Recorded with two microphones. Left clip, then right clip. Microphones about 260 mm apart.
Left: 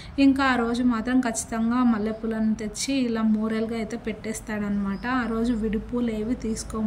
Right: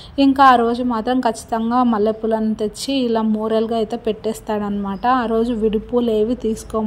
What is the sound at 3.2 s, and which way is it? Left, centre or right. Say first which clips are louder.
Speech: right 8 dB; centre.